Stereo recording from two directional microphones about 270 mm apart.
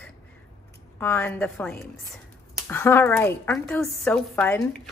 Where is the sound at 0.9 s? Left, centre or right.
Centre.